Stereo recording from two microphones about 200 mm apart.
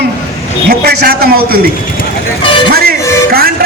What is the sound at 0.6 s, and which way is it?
Speech, 55° right (ahead or behind).